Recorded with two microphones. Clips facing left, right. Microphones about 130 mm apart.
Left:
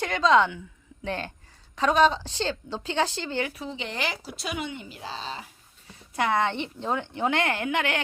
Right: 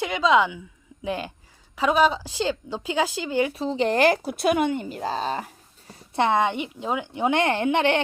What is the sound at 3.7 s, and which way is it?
Speech, 45° right (ahead or behind).